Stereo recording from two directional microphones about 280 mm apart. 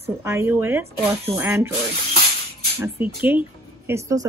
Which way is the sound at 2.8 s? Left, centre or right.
Centre.